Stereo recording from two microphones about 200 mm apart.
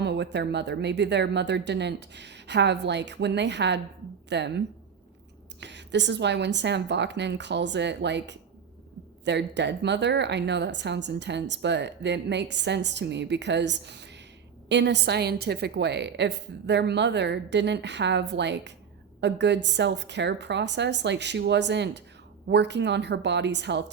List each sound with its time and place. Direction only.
0.0 s speech: 60° right (ahead or behind)